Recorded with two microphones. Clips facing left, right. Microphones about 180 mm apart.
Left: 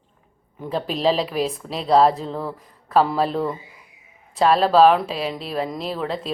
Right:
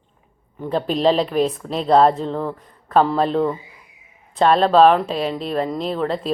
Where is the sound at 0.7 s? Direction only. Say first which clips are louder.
Right 3 dB; centre (ahead or behind).